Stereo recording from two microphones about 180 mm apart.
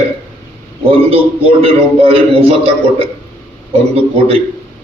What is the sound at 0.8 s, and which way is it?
A man's voice, 30° right (ahead or behind).